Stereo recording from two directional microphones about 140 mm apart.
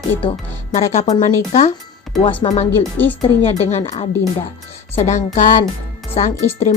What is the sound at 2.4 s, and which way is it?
Speech, 30° left (ahead or behind).